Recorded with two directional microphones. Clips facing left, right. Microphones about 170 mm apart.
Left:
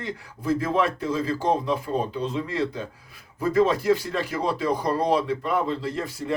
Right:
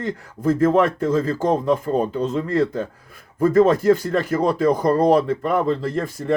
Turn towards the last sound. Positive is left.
turn(degrees=-50)  # may be behind; listen again after turning